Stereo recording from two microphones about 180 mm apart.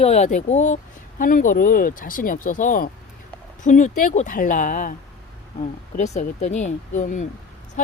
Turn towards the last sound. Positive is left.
turn(degrees=45)  # may be behind; listen again after turning